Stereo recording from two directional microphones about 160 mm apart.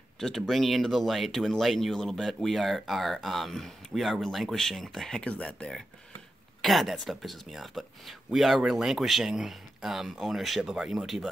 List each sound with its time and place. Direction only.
0.2 s speech: centre (ahead or behind)